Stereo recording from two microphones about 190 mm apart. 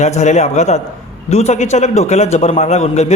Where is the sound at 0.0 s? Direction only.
35° left (ahead or behind).